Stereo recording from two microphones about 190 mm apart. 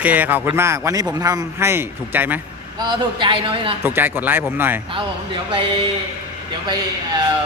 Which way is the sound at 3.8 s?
10° right (ahead or behind).